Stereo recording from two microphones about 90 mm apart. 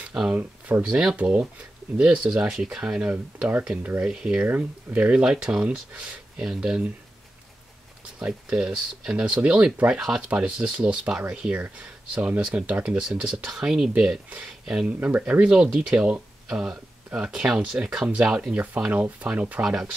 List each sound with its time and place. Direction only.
0.1 s speech: 10° right (ahead or behind)
0.4 s speech: 20° right (ahead or behind)
8.2 s speech: 10° right (ahead or behind)